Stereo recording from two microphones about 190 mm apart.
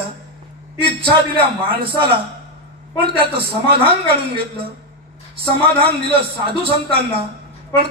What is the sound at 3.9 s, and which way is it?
Speech, 30° right (ahead or behind).